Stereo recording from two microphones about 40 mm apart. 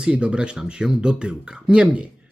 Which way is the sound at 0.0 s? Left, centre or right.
Right.